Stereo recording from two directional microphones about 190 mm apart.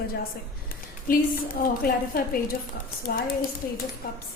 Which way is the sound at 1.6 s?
50° left (ahead or behind).